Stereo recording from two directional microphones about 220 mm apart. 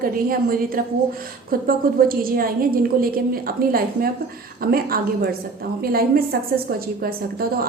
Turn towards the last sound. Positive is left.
turn(degrees=-45)  # may be behind; listen again after turning